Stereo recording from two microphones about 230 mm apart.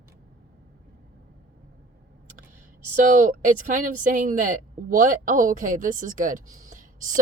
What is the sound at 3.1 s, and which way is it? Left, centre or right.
A woman's voice, right.